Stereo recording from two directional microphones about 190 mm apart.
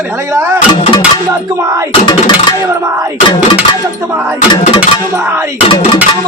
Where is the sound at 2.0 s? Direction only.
20° left (ahead or behind).